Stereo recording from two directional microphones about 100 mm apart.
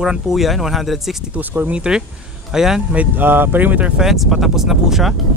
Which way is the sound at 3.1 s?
20° right (ahead or behind).